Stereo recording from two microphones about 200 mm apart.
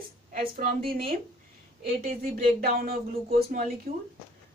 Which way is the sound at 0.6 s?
50° right (ahead or behind).